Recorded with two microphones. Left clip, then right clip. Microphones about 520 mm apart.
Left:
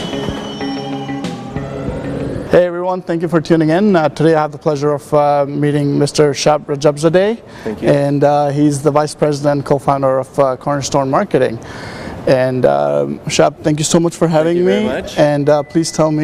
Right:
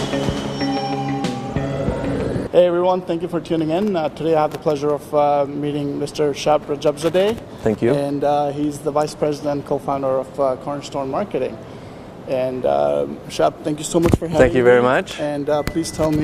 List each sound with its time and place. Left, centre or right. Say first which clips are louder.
2.5 s speech: left 2 dB; left
14.8 s speech: right 2 dB; right
15.2 s speech: left 9 dB; left